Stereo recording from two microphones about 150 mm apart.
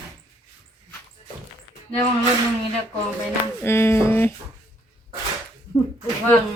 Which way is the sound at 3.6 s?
15° left (ahead or behind).